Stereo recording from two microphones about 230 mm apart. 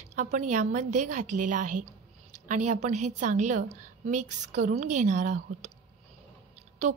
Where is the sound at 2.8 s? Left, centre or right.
Right.